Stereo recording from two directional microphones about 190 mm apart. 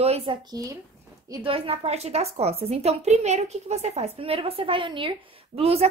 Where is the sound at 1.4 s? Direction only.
30° right (ahead or behind).